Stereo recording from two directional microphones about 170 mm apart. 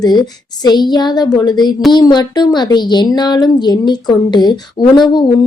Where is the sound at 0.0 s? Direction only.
25° left (ahead or behind).